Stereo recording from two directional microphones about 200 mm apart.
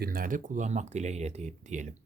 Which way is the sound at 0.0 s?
45° right (ahead or behind).